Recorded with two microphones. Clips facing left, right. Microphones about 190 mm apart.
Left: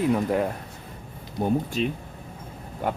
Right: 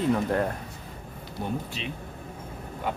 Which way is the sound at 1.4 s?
45° left (ahead or behind).